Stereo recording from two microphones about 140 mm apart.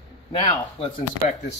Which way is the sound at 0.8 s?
45° left (ahead or behind).